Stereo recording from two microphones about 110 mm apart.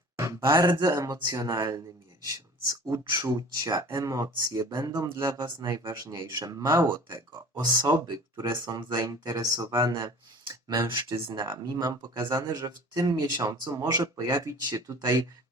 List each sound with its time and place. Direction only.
0.5 s speech: 35° right (ahead or behind)